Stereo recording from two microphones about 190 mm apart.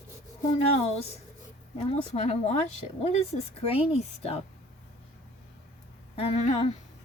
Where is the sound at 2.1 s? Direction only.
35° left (ahead or behind).